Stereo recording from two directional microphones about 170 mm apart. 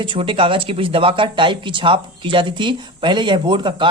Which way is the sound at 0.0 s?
30° right (ahead or behind).